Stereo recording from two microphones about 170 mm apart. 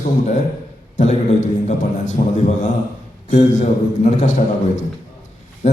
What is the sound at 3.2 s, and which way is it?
A man's voice, 45° left (ahead or behind).